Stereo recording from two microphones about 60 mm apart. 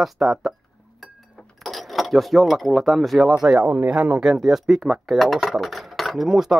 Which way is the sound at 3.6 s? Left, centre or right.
Right.